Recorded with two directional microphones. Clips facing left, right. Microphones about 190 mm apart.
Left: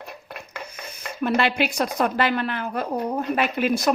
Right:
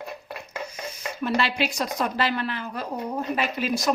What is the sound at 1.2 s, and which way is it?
A woman's voice, 55° left (ahead or behind).